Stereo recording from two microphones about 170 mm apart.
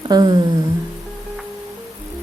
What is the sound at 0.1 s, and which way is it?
Speech, 25° right (ahead or behind).